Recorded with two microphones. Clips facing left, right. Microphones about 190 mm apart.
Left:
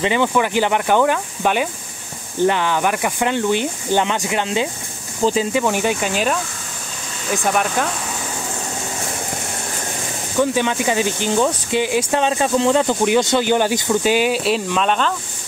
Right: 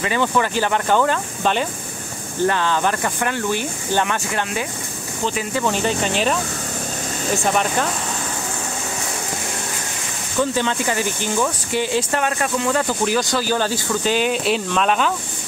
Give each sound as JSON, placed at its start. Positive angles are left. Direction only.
{"t": 0.0, "sound": "speech", "side_deg": 15}
{"t": 5.6, "sound": "speech", "side_deg": 10}
{"t": 7.4, "sound": "speech", "side_deg": 5}
{"t": 10.4, "sound": "speech", "side_deg": 15}